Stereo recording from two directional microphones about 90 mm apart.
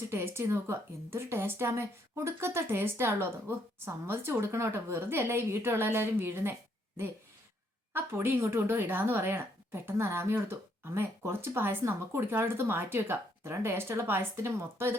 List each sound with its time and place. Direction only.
0.1 s speech: 30° right (ahead or behind)